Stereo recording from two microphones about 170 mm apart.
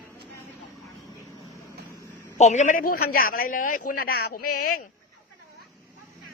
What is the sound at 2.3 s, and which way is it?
A woman's voice, 45° left (ahead or behind).